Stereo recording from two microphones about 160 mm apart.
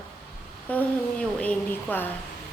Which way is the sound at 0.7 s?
10° left (ahead or behind).